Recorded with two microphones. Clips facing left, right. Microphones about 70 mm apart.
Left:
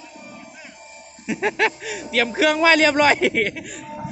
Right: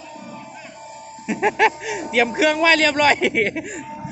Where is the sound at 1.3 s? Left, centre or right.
Centre.